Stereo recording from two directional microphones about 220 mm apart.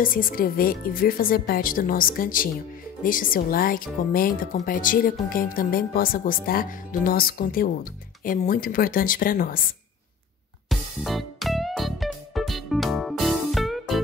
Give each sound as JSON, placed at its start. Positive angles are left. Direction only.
{"t": 0.0, "sound": "speech", "side_deg": 40}
{"t": 10.7, "sound": "music", "side_deg": 0}